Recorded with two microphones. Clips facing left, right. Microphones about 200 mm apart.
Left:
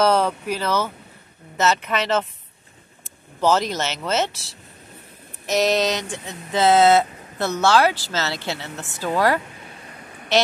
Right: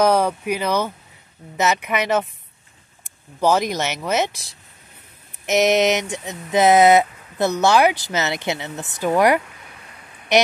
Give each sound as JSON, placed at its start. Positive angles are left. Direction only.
{"t": 0.0, "sound": "speech", "side_deg": -15}